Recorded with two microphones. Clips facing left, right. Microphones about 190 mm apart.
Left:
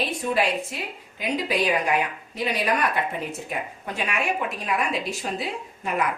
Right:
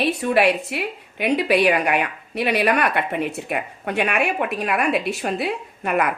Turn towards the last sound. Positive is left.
turn(degrees=-65)  # may be behind; listen again after turning